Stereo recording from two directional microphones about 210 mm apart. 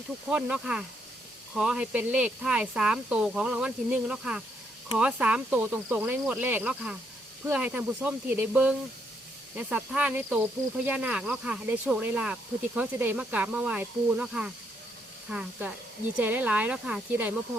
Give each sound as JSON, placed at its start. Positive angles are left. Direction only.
{"t": 0.3, "sound": "speech", "side_deg": -5}